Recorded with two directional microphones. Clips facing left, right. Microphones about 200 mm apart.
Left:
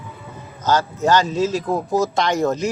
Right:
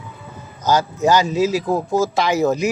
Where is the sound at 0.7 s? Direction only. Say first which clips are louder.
Right 1 dB; 10° right (ahead or behind).